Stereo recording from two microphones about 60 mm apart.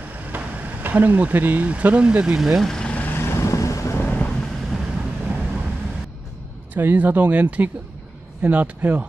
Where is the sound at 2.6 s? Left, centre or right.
Centre.